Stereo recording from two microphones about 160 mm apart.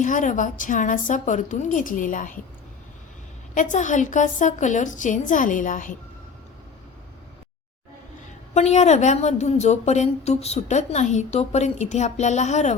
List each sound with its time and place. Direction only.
0.0 s a woman's voice: 55° left (ahead or behind)
3.5 s a woman's voice: 50° left (ahead or behind)
8.5 s a woman's voice: 45° left (ahead or behind)